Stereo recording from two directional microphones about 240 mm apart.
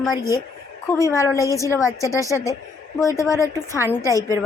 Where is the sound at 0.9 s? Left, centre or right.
Centre.